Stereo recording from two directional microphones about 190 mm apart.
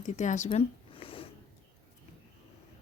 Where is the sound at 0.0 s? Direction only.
40° left (ahead or behind).